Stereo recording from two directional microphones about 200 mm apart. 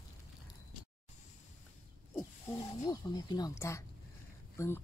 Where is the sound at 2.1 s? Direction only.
20° left (ahead or behind).